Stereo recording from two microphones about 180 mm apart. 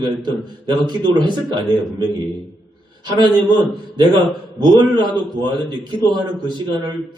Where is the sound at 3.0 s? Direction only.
25° right (ahead or behind).